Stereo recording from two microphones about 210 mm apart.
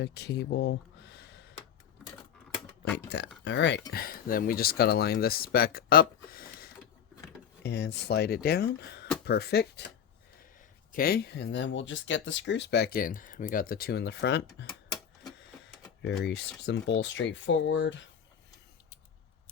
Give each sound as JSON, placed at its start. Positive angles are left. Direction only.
{"t": 0.0, "sound": "speech", "side_deg": 50}
{"t": 3.4, "sound": "speech", "side_deg": 55}
{"t": 10.9, "sound": "speech", "side_deg": 45}
{"t": 16.0, "sound": "speech", "side_deg": 55}